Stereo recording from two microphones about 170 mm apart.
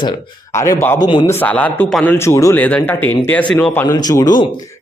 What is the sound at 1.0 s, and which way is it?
Speech, 25° left (ahead or behind).